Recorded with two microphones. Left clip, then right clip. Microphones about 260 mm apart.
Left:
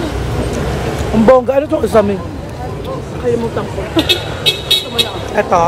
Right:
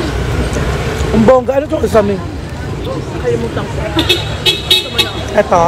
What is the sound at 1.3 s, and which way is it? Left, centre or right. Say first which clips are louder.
Speech: left 1 dB; centre.